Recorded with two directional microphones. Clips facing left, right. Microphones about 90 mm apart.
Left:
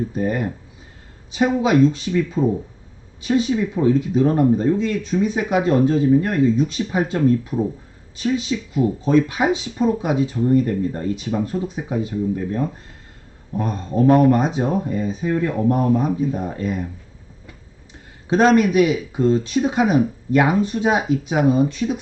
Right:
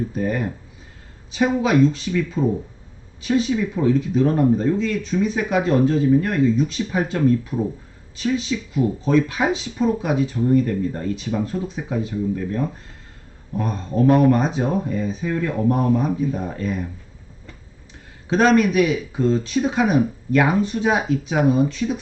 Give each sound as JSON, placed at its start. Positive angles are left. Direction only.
{"t": 0.1, "sound": "speech", "side_deg": 20}
{"t": 8.2, "sound": "speech", "side_deg": 20}
{"t": 18.3, "sound": "speech", "side_deg": 20}